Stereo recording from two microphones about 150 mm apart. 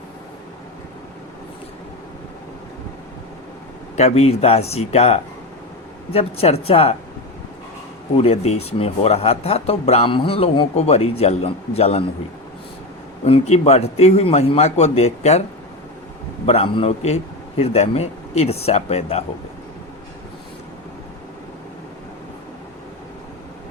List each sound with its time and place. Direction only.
3.9 s a woman's voice: 45° left (ahead or behind)
8.1 s speech: 40° left (ahead or behind)
13.2 s speech: 40° left (ahead or behind)
16.5 s speech: 45° left (ahead or behind)